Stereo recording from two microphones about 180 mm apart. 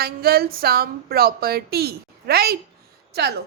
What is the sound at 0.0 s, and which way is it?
A woman's voice, 60° right (ahead or behind).